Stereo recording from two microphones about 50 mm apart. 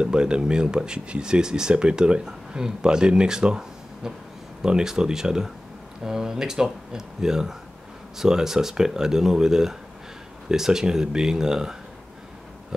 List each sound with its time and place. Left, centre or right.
0.0 s speech: centre